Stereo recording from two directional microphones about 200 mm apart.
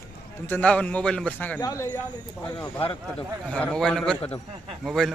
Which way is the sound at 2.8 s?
25° left (ahead or behind).